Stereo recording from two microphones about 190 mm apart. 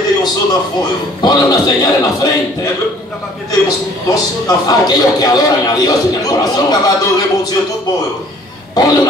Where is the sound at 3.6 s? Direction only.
20° left (ahead or behind).